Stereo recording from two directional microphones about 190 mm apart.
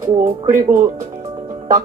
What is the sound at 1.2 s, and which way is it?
Music, 20° right (ahead or behind).